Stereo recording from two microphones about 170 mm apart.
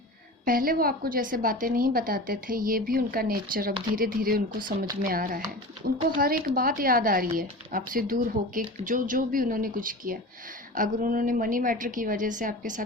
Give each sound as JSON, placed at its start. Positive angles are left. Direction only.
{"t": 0.4, "sound": "a woman's voice", "side_deg": -55}